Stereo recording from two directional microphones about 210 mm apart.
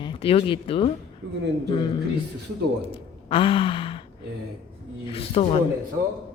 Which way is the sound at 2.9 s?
25° left (ahead or behind).